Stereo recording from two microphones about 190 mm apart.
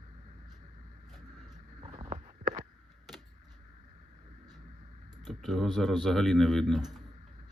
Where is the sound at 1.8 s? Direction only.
30° right (ahead or behind).